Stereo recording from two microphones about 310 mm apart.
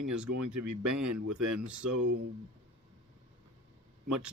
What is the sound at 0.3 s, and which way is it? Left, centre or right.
Speech, right.